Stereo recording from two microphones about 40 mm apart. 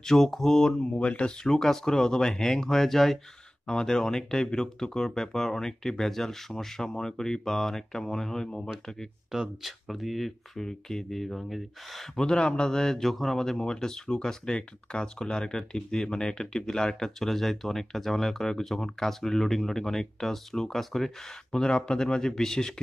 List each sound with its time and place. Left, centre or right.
0.0 s speech: centre
0.7 s speech: left
1.4 s speech: centre
3.6 s speech: centre
9.3 s speech: centre
12.2 s speech: left
21.5 s speech: centre